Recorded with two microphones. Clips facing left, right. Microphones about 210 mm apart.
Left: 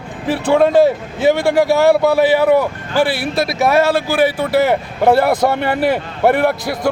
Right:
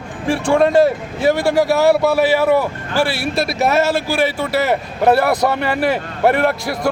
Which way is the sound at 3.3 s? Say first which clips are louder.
Left 1 dB; centre (ahead or behind).